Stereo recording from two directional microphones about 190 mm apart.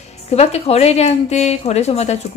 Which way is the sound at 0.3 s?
35° left (ahead or behind).